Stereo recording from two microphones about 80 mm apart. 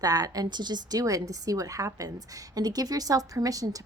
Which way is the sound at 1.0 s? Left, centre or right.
Right.